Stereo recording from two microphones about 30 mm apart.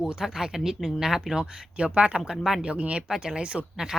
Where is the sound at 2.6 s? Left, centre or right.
Right.